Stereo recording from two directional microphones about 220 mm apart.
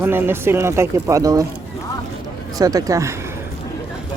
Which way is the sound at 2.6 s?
15° right (ahead or behind).